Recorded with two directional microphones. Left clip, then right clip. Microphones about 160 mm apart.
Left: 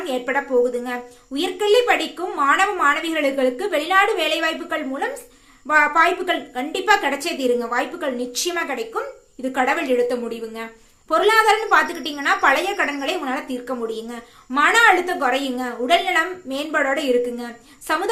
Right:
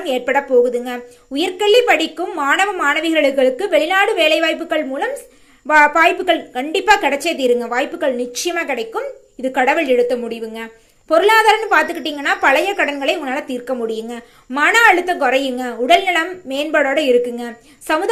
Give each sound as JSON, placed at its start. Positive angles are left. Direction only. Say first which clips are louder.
{"t": 0.0, "sound": "a woman's voice", "louder": "right 5 dB", "side_deg": -25}